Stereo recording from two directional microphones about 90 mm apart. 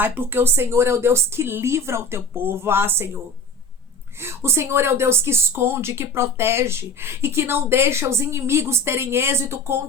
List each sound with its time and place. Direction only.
0.0 s speech: 20° right (ahead or behind)
4.2 s speech: 30° right (ahead or behind)